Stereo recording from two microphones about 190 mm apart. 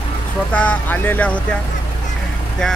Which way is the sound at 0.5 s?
5° left (ahead or behind).